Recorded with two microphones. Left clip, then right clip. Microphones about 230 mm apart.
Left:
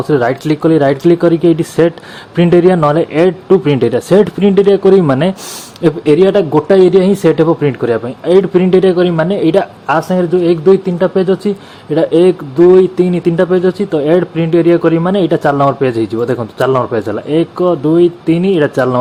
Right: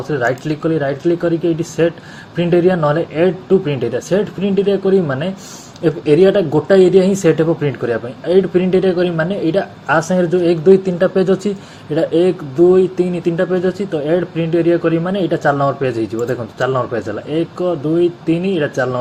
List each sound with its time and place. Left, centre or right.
0.1 s speech: left